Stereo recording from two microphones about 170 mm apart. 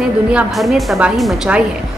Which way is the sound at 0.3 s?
5° right (ahead or behind).